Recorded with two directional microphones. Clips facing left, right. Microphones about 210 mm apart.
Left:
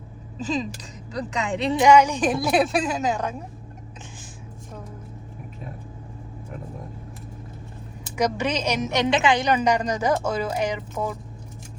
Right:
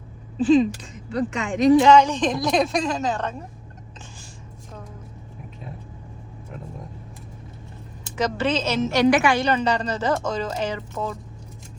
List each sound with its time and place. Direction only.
0.3 s speech: 40° left (ahead or behind)
1.8 s a woman's voice: 10° left (ahead or behind)
8.1 s a woman's voice: 10° left (ahead or behind)